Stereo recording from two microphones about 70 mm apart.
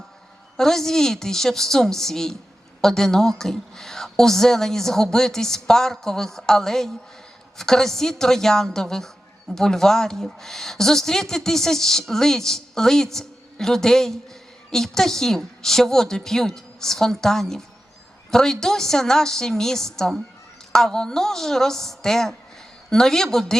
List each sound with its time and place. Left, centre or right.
0.5 s a woman's voice: centre